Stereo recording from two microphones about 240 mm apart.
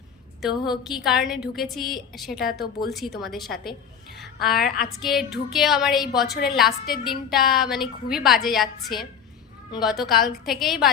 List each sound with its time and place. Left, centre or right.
0.4 s a woman's voice: centre